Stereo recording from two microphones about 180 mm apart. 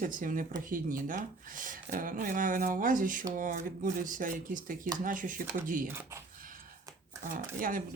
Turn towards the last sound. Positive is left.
turn(degrees=-50)  # may be behind; listen again after turning